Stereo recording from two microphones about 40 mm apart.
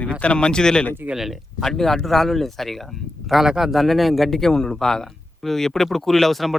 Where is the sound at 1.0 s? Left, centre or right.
Right.